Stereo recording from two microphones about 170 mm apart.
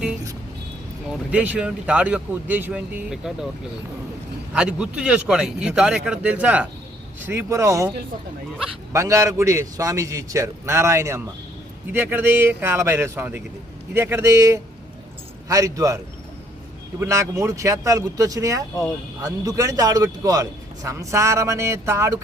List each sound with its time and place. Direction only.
1.1 s speech: 5° right (ahead or behind)
4.5 s a man's voice: 5° right (ahead or behind)
17.0 s a man's voice: 15° right (ahead or behind)